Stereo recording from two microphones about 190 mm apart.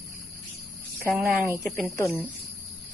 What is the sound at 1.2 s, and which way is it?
Speech, 10° right (ahead or behind).